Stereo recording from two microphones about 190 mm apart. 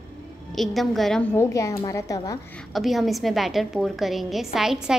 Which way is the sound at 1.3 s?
15° left (ahead or behind).